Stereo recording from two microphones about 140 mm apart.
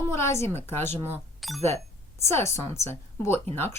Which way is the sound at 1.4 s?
Centre (ahead or behind).